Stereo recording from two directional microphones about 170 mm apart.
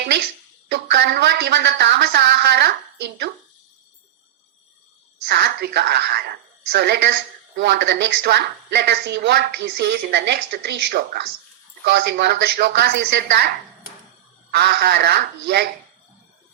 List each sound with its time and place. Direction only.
0.0 s a woman's voice: 70° right (ahead or behind)
5.3 s a woman's voice: 75° right (ahead or behind)
11.9 s a woman's voice: 85° right
14.5 s a woman's voice: 70° right (ahead or behind)